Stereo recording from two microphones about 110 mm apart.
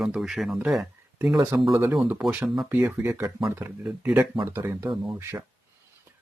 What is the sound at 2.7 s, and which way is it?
Speech, 15° right (ahead or behind).